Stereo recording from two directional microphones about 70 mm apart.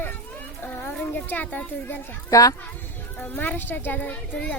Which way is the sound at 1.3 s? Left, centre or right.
Left.